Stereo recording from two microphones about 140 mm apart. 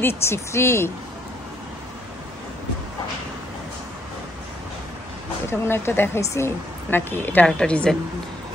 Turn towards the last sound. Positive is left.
turn(degrees=5)  # may be behind; listen again after turning